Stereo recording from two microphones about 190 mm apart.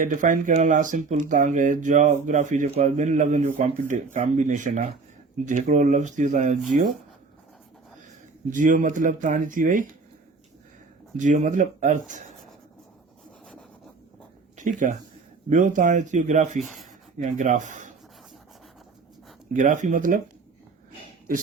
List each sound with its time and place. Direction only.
0.0 s speech: 40° right (ahead or behind)
8.4 s speech: 45° right (ahead or behind)
11.2 s speech: 40° right (ahead or behind)
14.5 s speech: 40° right (ahead or behind)
16.6 s speech: centre (ahead or behind)
17.2 s speech: 40° right (ahead or behind)
19.5 s speech: 40° right (ahead or behind)